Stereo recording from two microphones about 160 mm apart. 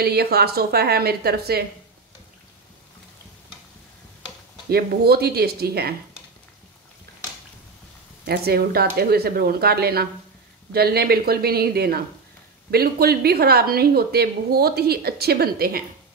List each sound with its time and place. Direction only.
0.0 s a woman's voice: 80° right
4.6 s a woman's voice: 75° right (ahead or behind)
8.3 s a woman's voice: 75° right (ahead or behind)